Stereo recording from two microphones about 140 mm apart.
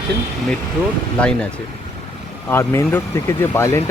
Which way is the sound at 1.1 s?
5° left (ahead or behind).